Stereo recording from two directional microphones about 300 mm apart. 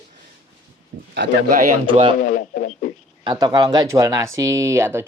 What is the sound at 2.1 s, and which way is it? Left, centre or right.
Speech, left.